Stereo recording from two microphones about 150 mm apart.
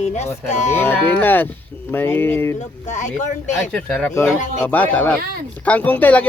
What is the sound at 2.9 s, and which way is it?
Speech, 55° left (ahead or behind).